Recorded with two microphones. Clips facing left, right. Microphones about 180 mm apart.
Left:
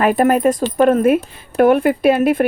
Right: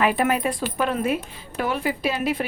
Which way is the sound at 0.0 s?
45° left (ahead or behind).